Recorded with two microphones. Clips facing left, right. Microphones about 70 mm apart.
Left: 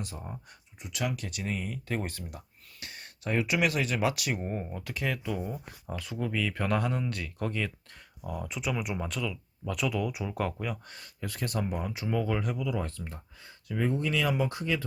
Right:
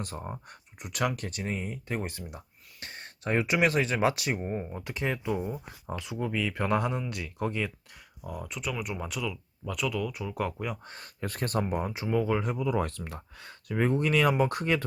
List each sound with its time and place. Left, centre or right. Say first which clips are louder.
0.0 s speech: right 3 dB; right
1.5 s speech: even; right
2.8 s speech: right 2 dB; right; by 7.7 s centre
8.3 s speech: left 2 dB; centre
10.8 s speech: right 3 dB; right
12.0 s speech: right 3 dB; centre
12.4 s speech: right 2 dB; right
12.8 s speech: right 4 dB; right